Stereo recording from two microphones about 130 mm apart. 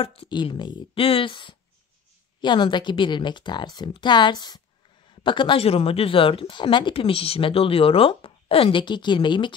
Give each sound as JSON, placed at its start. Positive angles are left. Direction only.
{"t": 0.0, "sound": "a woman's voice", "side_deg": 45}